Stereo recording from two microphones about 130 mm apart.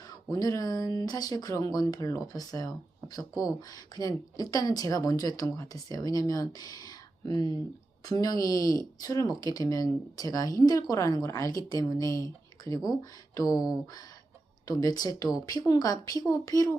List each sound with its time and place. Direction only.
0.1 s speech: 30° left (ahead or behind)
3.7 s speech: 30° left (ahead or behind)
7.3 s speech: 35° right (ahead or behind)
8.0 s speech: 30° left (ahead or behind)
14.7 s speech: 30° left (ahead or behind)